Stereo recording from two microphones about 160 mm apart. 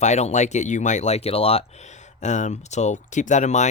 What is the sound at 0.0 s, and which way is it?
Speech, 45° left (ahead or behind).